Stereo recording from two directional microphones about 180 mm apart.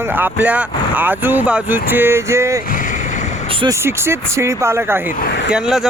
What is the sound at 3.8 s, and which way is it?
Speech, 15° right (ahead or behind).